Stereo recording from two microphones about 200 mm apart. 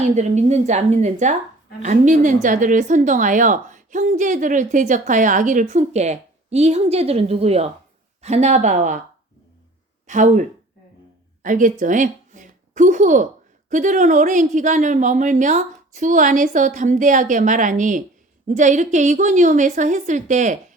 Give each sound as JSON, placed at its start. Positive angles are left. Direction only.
{"t": 0.0, "sound": "a woman's voice", "side_deg": -35}
{"t": 10.1, "sound": "a woman's voice", "side_deg": -35}
{"t": 11.4, "sound": "a woman's voice", "side_deg": -40}